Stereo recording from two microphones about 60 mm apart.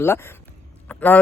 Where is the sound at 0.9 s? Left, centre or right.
Centre.